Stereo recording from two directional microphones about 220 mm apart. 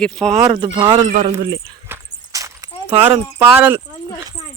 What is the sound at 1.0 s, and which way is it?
Speech, 35° right (ahead or behind).